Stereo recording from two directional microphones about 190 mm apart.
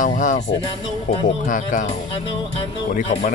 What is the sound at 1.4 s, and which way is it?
Speech, 45° left (ahead or behind).